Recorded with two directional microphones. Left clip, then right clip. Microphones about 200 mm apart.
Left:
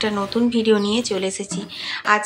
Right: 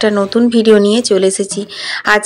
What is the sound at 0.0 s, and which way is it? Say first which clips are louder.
Speech: right 9 dB; 30° right (ahead or behind).